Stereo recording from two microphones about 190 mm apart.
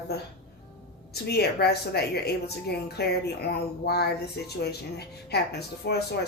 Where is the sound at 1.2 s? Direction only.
60° left (ahead or behind).